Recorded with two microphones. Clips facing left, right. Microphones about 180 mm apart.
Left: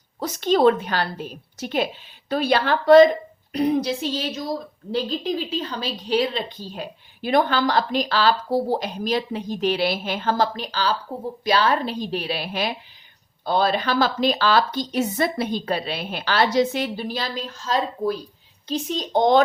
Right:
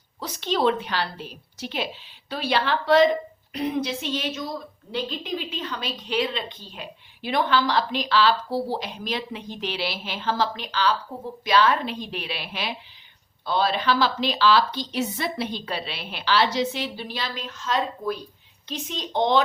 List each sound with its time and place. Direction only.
0.2 s a woman's voice: 45° left (ahead or behind)